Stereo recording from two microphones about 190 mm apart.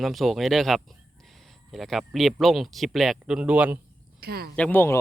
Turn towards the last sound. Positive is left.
turn(degrees=10)  # may be behind; listen again after turning